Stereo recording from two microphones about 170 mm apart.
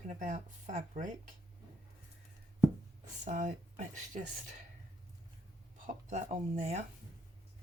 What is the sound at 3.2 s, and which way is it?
Speech, 45° right (ahead or behind).